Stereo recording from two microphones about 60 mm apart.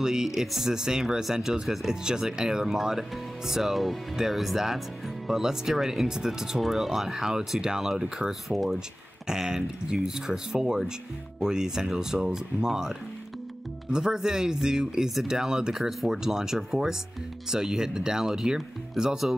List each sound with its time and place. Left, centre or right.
0.0 s speech: centre
13.9 s speech: centre